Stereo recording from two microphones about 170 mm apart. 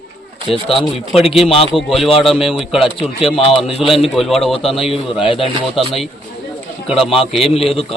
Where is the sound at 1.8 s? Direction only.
Centre (ahead or behind).